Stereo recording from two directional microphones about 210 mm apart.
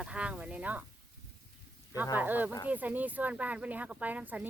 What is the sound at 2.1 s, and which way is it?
Speech, 10° right (ahead or behind).